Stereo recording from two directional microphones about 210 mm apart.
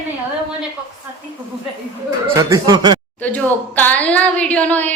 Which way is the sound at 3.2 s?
5° left (ahead or behind).